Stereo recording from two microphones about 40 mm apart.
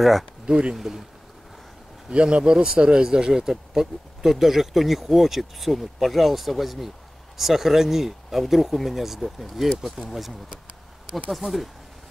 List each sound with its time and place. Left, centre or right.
0.5 s speech: right
0.7 s speech: centre
2.0 s speech: right; by 11.7 s centre